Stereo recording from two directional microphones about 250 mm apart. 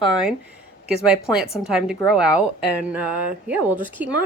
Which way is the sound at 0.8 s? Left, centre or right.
Centre.